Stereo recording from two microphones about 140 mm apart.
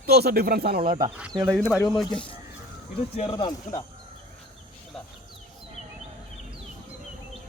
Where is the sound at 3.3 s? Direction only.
30° left (ahead or behind).